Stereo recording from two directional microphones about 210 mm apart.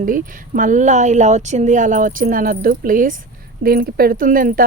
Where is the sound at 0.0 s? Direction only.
40° right (ahead or behind).